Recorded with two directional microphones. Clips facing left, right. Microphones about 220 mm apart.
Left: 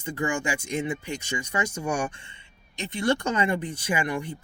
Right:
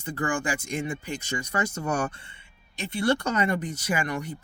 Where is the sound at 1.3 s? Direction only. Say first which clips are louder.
Right 1 dB; 15° left (ahead or behind).